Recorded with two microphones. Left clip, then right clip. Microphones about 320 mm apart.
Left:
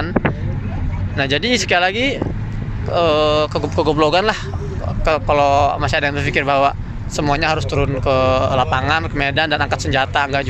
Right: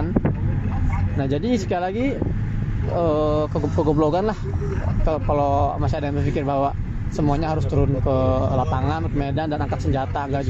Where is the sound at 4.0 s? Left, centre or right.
Left.